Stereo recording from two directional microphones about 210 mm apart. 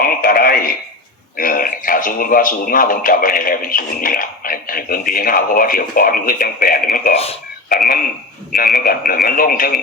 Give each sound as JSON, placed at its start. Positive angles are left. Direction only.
{"t": 0.0, "sound": "radio", "side_deg": 45}
{"t": 1.4, "sound": "speech", "side_deg": 40}
{"t": 8.5, "sound": "speech", "side_deg": 40}